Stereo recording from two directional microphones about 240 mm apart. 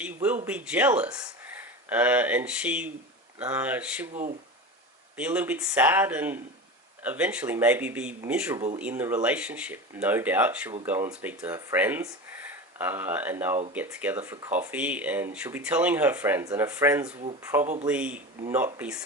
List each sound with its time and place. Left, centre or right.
0.0 s speech: centre
4.1 s speech: right
5.1 s speech: centre